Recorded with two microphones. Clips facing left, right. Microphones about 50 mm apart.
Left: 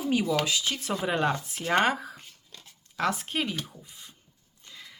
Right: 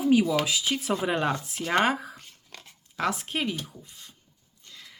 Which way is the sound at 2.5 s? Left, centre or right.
Right.